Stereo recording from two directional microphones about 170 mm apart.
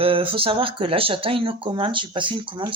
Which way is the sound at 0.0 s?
30° right (ahead or behind).